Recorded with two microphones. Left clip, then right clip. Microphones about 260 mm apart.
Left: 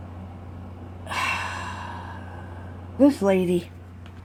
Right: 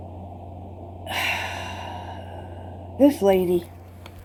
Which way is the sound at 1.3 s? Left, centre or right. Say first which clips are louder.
Even; centre.